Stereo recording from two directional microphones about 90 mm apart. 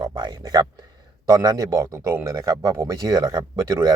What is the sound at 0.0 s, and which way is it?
Speech, 55° right (ahead or behind).